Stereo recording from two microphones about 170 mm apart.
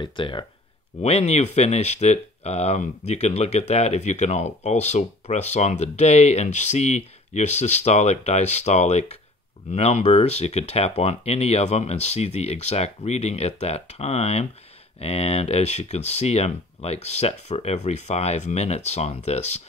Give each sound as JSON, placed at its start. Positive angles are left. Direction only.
{"t": 0.0, "sound": "speech", "side_deg": 30}